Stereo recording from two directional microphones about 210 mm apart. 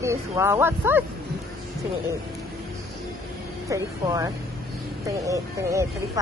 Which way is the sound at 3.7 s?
15° right (ahead or behind).